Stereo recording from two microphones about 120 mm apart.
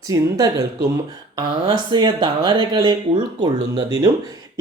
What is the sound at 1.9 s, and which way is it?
Speech, 40° right (ahead or behind).